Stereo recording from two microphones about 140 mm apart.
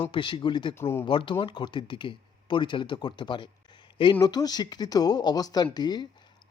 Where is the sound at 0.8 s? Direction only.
15° left (ahead or behind).